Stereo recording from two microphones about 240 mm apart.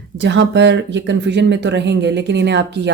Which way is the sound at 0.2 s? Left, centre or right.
Right.